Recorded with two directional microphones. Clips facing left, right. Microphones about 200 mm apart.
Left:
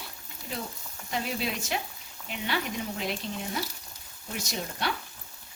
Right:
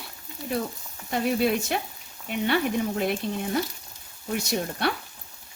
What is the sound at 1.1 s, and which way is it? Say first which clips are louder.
Speech: right 9 dB; 55° right (ahead or behind).